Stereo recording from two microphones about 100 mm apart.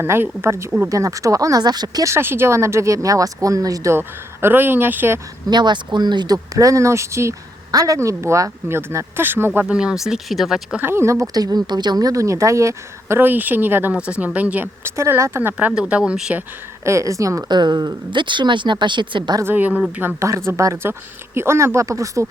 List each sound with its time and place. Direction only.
0.0 s a woman's voice: 25° right (ahead or behind); by 2.0 s 40° right (ahead or behind)
2.0 s speech: 25° right (ahead or behind)
3.9 s a woman's voice: 25° right (ahead or behind)
5.5 s speech: 45° right (ahead or behind); by 9.5 s 20° right (ahead or behind)
9.6 s speech: 10° right (ahead or behind)
10.8 s a woman's voice: 25° right (ahead or behind)
14.9 s a woman's voice: 30° right (ahead or behind)
15.5 s speech: 10° right (ahead or behind)
16.8 s speech: 30° right (ahead or behind)
17.5 s speech: 45° right (ahead or behind)
19.4 s a woman's voice: 20° right (ahead or behind)